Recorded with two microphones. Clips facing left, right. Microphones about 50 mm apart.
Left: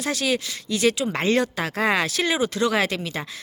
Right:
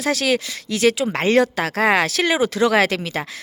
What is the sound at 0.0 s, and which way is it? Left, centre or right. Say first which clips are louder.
Speech: right 4 dB; right.